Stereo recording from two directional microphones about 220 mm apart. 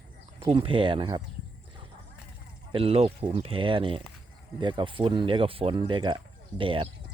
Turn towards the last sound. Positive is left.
turn(degrees=-25)  # may be behind; listen again after turning